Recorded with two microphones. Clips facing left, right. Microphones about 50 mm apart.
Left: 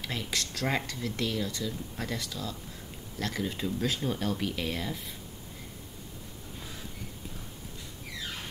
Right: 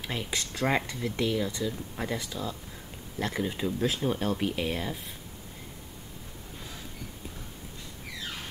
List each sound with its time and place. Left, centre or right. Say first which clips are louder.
0.0 s speech: right 1 dB; centre